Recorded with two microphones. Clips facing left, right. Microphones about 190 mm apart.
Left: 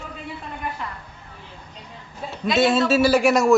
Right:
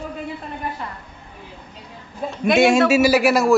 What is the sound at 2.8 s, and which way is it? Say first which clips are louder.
Speech: right 2 dB; 10° right (ahead or behind).